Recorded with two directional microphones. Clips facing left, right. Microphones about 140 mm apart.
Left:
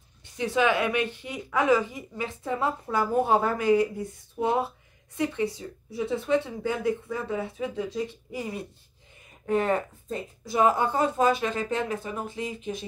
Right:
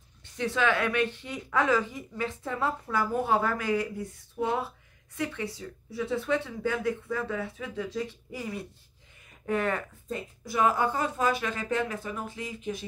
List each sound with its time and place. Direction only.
0.2 s a woman's voice: 15° left (ahead or behind)